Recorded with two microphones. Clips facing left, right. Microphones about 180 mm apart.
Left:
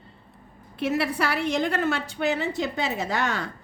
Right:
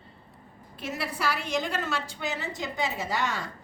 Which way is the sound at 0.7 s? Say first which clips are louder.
Left 8 dB; 65° left (ahead or behind).